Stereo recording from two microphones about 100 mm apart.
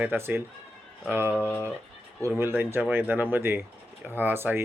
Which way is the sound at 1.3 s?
20° left (ahead or behind).